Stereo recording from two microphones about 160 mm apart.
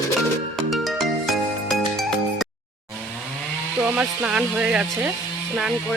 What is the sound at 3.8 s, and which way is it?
Speech, 5° right (ahead or behind).